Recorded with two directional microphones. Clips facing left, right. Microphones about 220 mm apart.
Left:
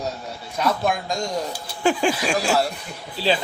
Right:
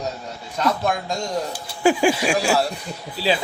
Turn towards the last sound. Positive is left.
turn(degrees=-5)  # may be behind; listen again after turning